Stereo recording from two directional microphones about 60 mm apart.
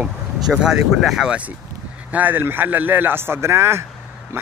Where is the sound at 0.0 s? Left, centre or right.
Centre.